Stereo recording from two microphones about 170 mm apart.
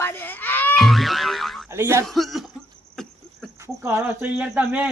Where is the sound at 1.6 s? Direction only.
15° right (ahead or behind).